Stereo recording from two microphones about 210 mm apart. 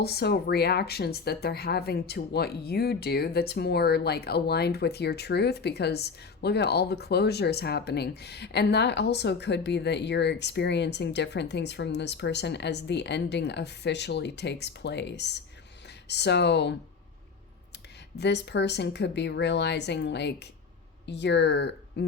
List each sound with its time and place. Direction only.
0.0 s speech: 50° left (ahead or behind)
18.2 s speech: 55° left (ahead or behind)